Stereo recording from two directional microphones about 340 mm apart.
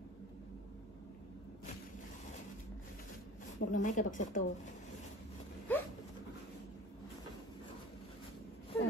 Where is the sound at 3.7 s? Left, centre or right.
Left.